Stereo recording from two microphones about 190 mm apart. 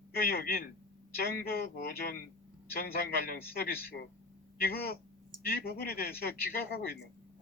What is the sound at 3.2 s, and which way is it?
A man's voice, 55° left (ahead or behind).